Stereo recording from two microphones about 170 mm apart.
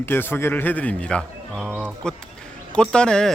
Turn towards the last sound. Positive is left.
turn(degrees=5)  # may be behind; listen again after turning